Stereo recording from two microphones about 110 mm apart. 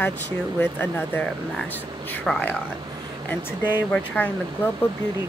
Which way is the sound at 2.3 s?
5° left (ahead or behind).